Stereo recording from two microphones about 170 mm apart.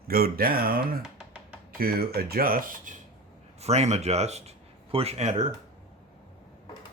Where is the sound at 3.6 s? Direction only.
40° right (ahead or behind).